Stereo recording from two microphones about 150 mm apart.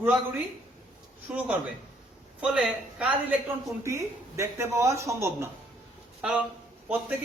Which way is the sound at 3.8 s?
20° right (ahead or behind).